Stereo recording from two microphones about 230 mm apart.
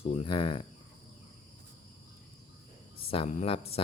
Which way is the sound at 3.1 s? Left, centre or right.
Left.